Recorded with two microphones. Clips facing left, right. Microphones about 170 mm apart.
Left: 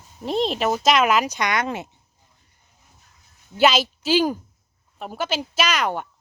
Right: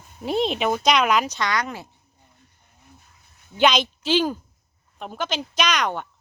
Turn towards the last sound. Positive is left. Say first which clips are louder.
# left 1 dB
turn(degrees=5)  # may be behind; listen again after turning